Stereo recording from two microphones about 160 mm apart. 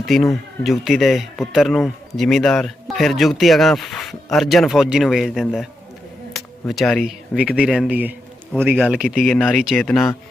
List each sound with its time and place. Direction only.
0.0 s speech: centre (ahead or behind)